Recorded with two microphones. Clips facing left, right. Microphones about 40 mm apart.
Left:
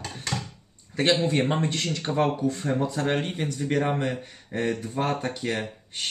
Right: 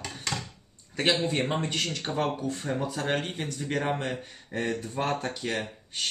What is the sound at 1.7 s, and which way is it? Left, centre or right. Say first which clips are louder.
Speech: left 1 dB; centre.